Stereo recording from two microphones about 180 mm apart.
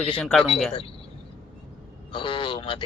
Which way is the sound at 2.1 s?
30° left (ahead or behind).